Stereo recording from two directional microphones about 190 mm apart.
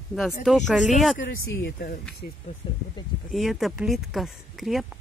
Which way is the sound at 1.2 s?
75° left (ahead or behind).